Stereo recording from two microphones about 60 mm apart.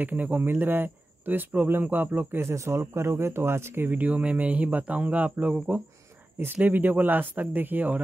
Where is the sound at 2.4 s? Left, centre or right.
Right.